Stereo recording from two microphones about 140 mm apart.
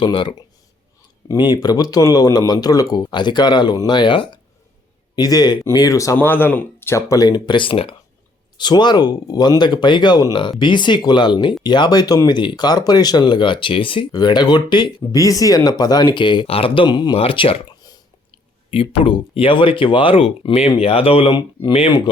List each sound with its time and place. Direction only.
0.0 s speech: 35° left (ahead or behind)
6.1 s speech: 15° left (ahead or behind); by 22.1 s 40° left (ahead or behind)